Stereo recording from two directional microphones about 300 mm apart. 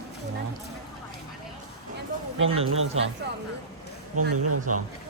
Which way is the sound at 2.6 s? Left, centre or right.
Right.